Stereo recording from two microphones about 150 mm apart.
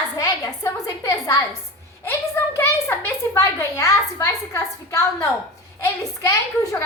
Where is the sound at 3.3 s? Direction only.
20° left (ahead or behind).